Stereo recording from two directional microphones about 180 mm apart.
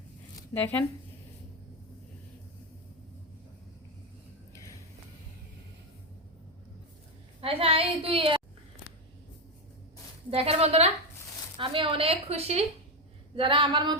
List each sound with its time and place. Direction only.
0.5 s speech: 10° left (ahead or behind)
7.4 s a woman's voice: 30° right (ahead or behind)
10.2 s a woman's voice: 35° right (ahead or behind)